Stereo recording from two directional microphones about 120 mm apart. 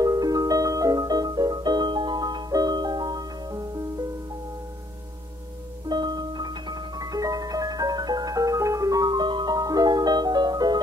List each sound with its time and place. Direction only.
0.0 s music: 30° right (ahead or behind)
5.9 s music: 35° right (ahead or behind)